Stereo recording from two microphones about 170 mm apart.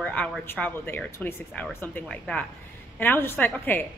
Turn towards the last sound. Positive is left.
turn(degrees=10)  # may be behind; listen again after turning